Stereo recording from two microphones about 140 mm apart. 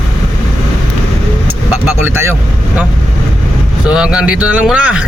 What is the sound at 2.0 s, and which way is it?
Speech, 15° right (ahead or behind).